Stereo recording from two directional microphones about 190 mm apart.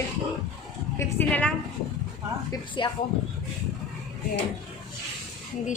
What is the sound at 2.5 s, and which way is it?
Speech, 25° left (ahead or behind).